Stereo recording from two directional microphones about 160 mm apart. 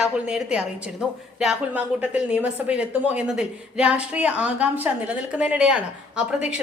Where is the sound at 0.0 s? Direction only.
5° right (ahead or behind).